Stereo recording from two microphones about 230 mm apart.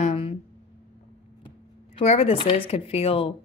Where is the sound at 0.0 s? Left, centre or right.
Left.